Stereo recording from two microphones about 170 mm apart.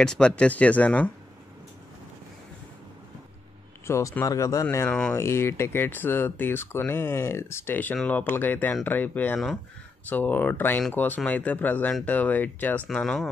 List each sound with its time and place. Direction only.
0.0 s speech: 5° left (ahead or behind)
3.8 s speech: 15° left (ahead or behind)